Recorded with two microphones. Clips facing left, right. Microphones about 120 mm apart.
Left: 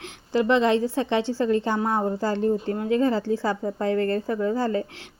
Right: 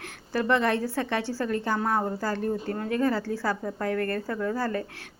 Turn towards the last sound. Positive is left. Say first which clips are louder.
# left 4 dB
turn(degrees=20)  # may be behind; listen again after turning